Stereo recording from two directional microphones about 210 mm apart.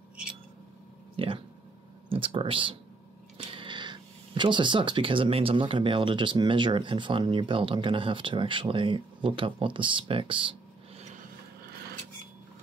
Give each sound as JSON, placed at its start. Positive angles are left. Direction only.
{"t": 1.1, "sound": "a sound", "side_deg": -25}
{"t": 2.0, "sound": "speech", "side_deg": -25}
{"t": 11.0, "sound": "vehicle", "side_deg": -35}